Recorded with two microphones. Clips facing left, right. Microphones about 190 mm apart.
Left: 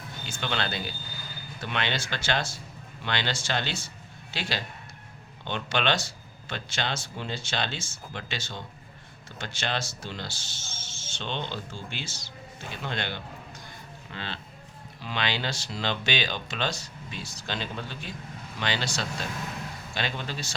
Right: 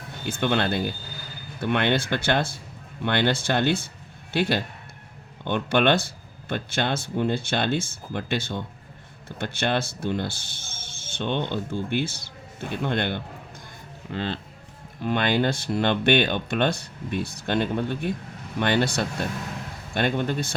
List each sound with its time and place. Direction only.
0.3 s a man's voice: 55° right (ahead or behind)